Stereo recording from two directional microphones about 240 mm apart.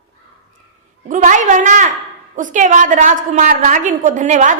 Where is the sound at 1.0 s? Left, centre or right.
Right.